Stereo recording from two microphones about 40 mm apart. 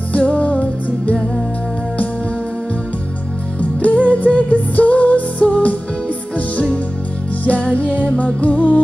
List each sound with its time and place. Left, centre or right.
0.1 s music: left
3.5 s music: left
7.7 s music: left